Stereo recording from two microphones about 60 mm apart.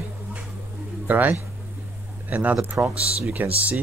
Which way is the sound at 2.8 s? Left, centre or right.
Right.